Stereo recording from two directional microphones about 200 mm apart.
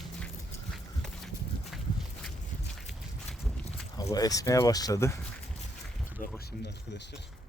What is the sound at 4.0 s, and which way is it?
Speech, 20° left (ahead or behind).